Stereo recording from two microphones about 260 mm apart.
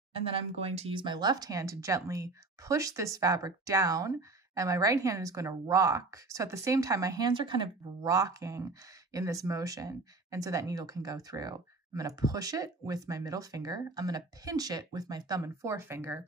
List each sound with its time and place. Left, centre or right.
0.2 s speech: right